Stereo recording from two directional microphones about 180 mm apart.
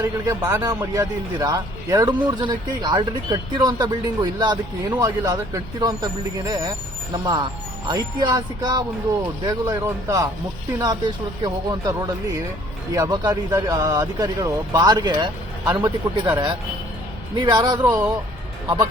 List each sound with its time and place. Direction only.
0.0 s speech: 15° right (ahead or behind)
15.7 s speech: 15° right (ahead or behind)
17.3 s speech: 25° right (ahead or behind)